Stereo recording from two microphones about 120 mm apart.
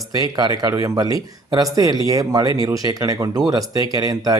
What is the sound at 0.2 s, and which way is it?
Speech, 35° right (ahead or behind).